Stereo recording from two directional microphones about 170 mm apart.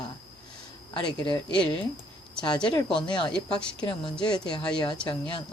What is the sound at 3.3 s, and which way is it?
A woman's voice, 5° left (ahead or behind).